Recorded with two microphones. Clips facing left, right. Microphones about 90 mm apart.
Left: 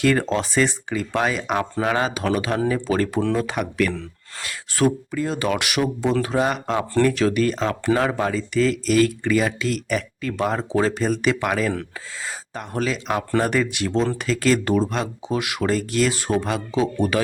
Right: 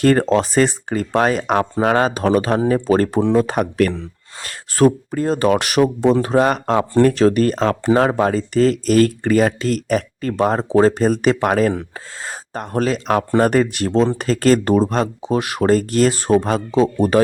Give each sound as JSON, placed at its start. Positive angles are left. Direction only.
{"t": 0.0, "sound": "speech", "side_deg": -40}